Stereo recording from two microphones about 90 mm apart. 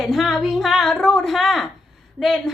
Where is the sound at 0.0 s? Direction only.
Centre (ahead or behind).